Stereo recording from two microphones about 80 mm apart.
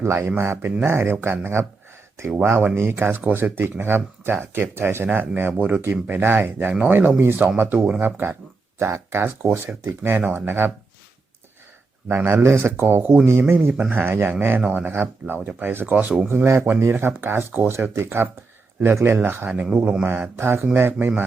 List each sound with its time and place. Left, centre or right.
0.0 s speech: right
2.5 s speech: right
2.7 s speech: right
12.0 s speech: right